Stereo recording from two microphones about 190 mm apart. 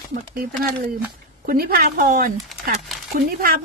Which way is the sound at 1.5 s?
50° right (ahead or behind).